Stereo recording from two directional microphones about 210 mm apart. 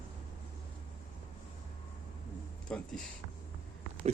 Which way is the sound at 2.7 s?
5° left (ahead or behind).